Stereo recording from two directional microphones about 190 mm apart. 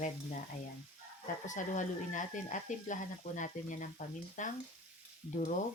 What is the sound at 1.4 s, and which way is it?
Speech, 40° left (ahead or behind).